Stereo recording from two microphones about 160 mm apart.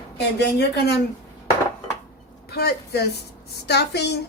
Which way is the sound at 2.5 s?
80° left.